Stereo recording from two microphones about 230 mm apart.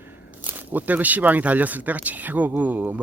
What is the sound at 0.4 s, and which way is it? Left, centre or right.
Speech, centre.